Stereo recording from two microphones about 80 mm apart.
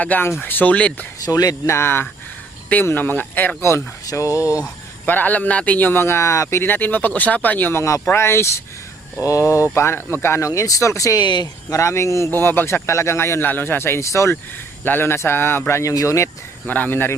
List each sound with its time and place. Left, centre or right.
0.0 s a man's voice: centre
1.2 s speech: left
1.7 s a man's voice: left
3.6 s speech: left
5.0 s a man's voice: left
6.6 s a man's voice: left
7.8 s speech: left
10.5 s speech: left
11.2 s speech: left
11.7 s speech: left
12.3 s speech: left
14.8 s a man's voice: left
15.8 s speech: left
16.6 s a man's voice: left